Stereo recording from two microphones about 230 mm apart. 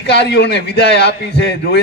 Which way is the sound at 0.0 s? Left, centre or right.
Left.